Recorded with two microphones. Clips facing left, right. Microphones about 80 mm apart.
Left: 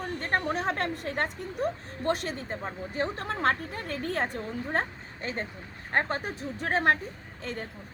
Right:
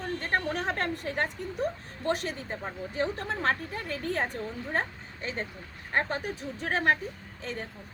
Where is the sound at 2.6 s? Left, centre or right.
Left.